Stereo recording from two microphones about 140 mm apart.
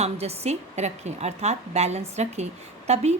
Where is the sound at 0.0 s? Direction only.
50° right (ahead or behind).